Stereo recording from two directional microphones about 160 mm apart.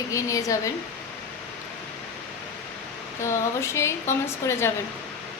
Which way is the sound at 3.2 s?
15° left (ahead or behind).